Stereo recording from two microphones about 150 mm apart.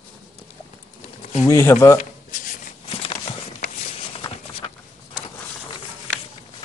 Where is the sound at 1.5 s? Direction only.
15° left (ahead or behind).